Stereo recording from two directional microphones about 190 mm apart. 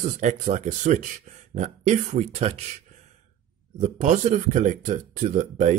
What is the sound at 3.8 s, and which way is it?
Speech, 40° right (ahead or behind).